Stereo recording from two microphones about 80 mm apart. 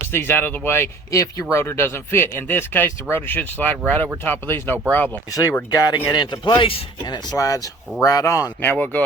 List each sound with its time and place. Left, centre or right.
0.1 s speech: left
1.1 s speech: left
5.3 s speech: left
5.7 s speech: left
7.1 s speech: left
8.6 s speech: centre